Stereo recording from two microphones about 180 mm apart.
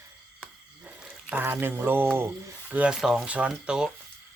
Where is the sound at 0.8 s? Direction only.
5° right (ahead or behind).